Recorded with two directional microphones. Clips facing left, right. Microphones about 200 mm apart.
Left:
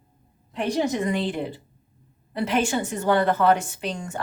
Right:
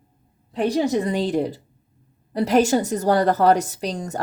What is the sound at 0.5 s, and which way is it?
Speech, 35° right (ahead or behind).